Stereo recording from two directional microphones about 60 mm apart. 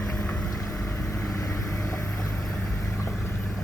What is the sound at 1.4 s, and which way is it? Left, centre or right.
Vehicle, left.